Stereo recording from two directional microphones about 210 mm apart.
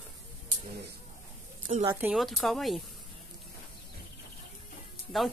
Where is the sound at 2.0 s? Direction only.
Centre (ahead or behind).